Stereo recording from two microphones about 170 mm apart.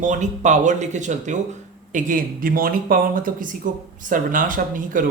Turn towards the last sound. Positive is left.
turn(degrees=-55)  # may be behind; listen again after turning